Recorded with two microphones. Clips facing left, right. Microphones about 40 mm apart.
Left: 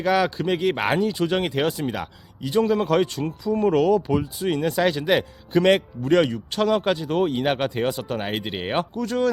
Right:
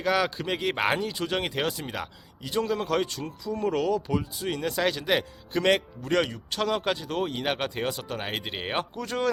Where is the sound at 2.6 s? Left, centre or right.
Centre.